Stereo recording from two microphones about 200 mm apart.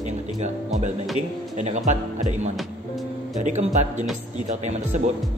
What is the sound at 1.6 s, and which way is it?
Speech, 35° right (ahead or behind).